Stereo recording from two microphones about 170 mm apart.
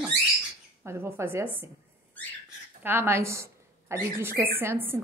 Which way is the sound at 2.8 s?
15° right (ahead or behind).